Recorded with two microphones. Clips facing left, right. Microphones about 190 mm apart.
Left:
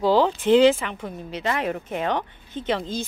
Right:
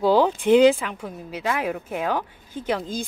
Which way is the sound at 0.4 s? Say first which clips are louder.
Right 1 dB; 15° right (ahead or behind).